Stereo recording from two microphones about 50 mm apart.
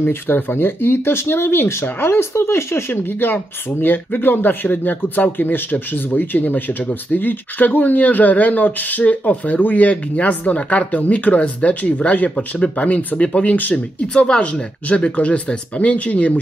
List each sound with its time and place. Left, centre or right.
0.0 s speech: left
12.4 s speech: left
14.1 s speech: centre